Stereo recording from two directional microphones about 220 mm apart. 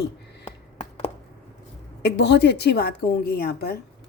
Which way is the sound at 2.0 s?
50° left (ahead or behind).